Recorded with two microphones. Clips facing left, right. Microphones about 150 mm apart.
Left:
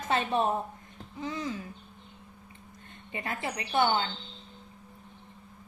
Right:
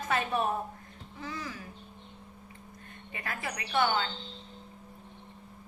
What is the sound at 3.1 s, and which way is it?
Speech, 25° left (ahead or behind).